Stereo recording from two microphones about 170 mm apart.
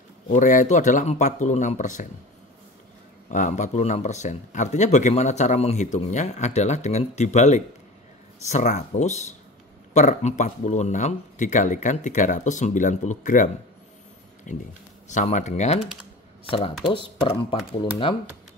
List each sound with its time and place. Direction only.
0.3 s speech: 50° left (ahead or behind)
3.3 s speech: 45° left (ahead or behind)